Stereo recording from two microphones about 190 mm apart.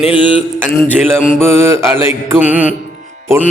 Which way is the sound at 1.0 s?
5° left (ahead or behind).